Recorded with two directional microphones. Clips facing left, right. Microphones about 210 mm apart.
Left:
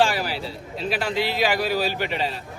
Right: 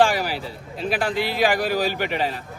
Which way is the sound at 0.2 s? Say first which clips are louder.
Right 1 dB; 15° right (ahead or behind).